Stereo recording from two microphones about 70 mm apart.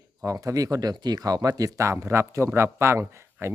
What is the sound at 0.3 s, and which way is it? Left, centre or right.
A man's voice, right.